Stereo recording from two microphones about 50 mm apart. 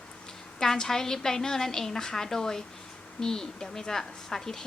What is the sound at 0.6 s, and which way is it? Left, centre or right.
A woman's voice, centre.